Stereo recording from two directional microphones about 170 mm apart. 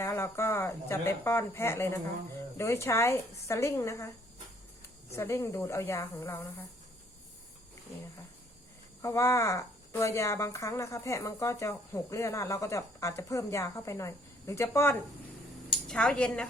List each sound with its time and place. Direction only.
0.0 s speech: 15° left (ahead or behind)
5.1 s speech: 20° left (ahead or behind)
9.0 s a woman's voice: 15° left (ahead or behind)